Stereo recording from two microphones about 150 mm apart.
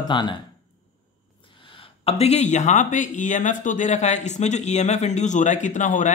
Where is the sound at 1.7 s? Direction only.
40° left (ahead or behind).